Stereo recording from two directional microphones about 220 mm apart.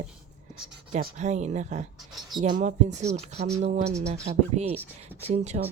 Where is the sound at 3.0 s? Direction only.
30° right (ahead or behind).